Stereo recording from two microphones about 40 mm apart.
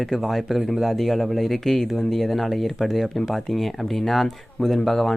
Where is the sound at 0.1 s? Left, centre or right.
Centre.